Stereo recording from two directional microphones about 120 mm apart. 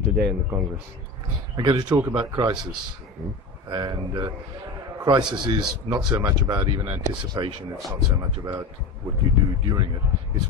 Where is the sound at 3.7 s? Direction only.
40° right (ahead or behind).